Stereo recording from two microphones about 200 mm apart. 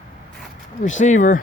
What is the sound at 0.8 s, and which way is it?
Speech, 35° left (ahead or behind).